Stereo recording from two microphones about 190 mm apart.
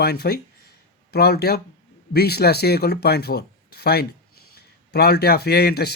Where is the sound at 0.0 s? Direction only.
55° left (ahead or behind).